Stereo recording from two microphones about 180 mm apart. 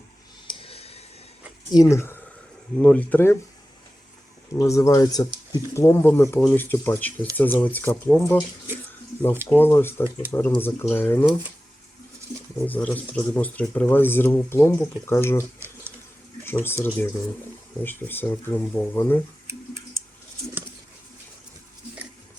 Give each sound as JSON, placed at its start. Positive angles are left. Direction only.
{"t": 0.4, "sound": "a sound", "side_deg": 30}
{"t": 1.7, "sound": "speech", "side_deg": 20}
{"t": 4.5, "sound": "speech", "side_deg": 15}
{"t": 9.5, "sound": "speech", "side_deg": 10}
{"t": 12.6, "sound": "speech", "side_deg": 10}